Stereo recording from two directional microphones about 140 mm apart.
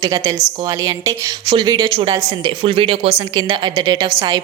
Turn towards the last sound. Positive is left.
turn(degrees=-30)  # may be behind; listen again after turning